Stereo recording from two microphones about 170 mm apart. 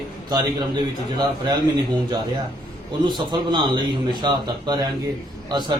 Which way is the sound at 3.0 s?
25° right (ahead or behind).